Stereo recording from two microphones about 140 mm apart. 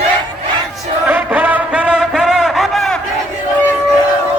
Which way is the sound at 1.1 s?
10° right (ahead or behind).